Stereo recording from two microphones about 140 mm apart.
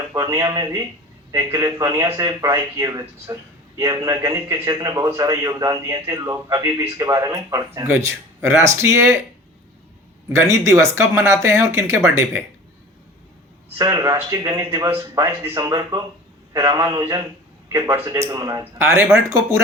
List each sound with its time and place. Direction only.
0.1 s a man's voice: 25° right (ahead or behind)
10.2 s a man's voice: 20° right (ahead or behind)
13.7 s a man's voice: 25° right (ahead or behind)